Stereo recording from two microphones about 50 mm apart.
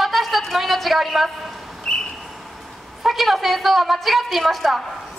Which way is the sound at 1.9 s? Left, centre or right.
Centre.